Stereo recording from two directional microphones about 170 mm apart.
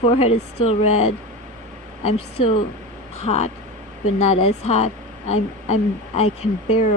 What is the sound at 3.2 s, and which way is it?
Speech, 40° left (ahead or behind).